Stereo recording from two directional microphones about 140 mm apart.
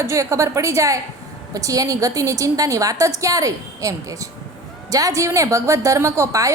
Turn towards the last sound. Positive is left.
turn(degrees=-20)  # may be behind; listen again after turning